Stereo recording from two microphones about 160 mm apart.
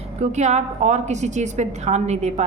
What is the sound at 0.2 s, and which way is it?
A woman's voice, 45° right (ahead or behind).